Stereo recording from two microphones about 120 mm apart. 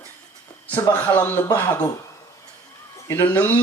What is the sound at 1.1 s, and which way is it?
Speech, 15° left (ahead or behind).